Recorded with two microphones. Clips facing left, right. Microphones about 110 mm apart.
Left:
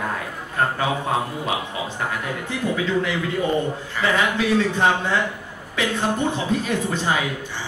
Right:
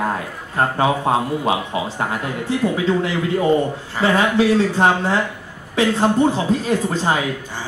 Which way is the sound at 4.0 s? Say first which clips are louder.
Right 5 dB; 30° right (ahead or behind).